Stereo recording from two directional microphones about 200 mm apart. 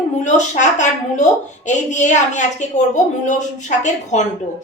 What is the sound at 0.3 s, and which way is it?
A woman's voice, 35° left (ahead or behind).